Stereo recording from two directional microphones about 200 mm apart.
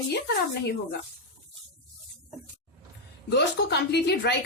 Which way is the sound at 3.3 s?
55° left (ahead or behind).